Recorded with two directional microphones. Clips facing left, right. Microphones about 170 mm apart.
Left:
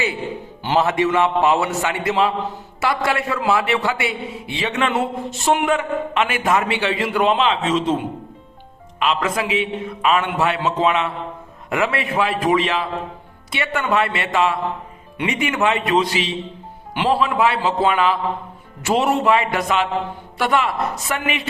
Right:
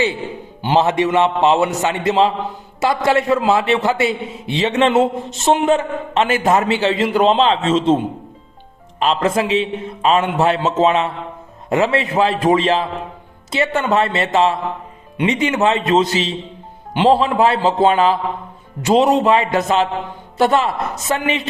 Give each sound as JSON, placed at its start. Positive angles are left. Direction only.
{"t": 0.6, "sound": "speech", "side_deg": -20}
{"t": 7.0, "sound": "speech", "side_deg": -25}
{"t": 18.9, "sound": "speech", "side_deg": -20}